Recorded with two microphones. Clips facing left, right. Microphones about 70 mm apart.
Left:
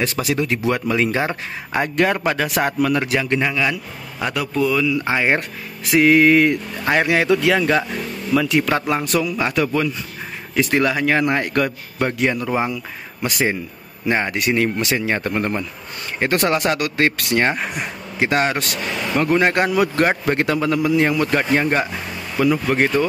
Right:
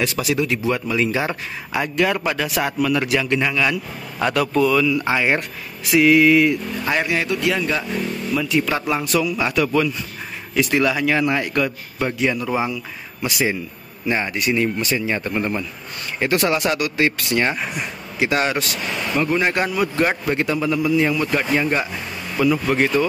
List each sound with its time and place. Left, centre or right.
0.0 s speech: left
0.6 s a man's voice: left
1.2 s speech: left
3.3 s a man's voice: centre
4.9 s speech: left
5.9 s speech: left
7.1 s a man's voice: left
8.4 s speech: left
8.6 s a man's voice: left
14.3 s speech: left
15.0 s a man's voice: left
15.3 s a man's voice: left
17.4 s a man's voice: left